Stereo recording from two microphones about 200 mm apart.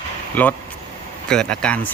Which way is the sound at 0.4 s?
10° left (ahead or behind).